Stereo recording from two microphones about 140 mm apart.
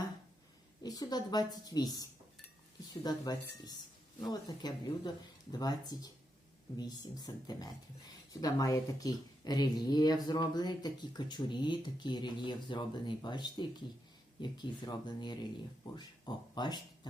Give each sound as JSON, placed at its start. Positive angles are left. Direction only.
{"t": 0.8, "sound": "speech", "side_deg": 30}